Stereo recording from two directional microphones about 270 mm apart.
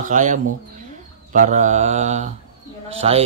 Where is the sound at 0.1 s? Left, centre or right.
Right.